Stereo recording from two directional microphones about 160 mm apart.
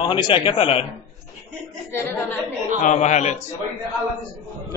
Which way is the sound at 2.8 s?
50° left (ahead or behind).